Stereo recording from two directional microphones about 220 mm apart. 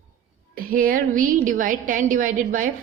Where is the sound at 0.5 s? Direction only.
40° right (ahead or behind).